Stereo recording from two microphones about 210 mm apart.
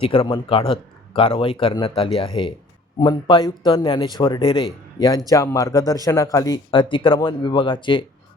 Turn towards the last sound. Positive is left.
turn(degrees=25)  # may be behind; listen again after turning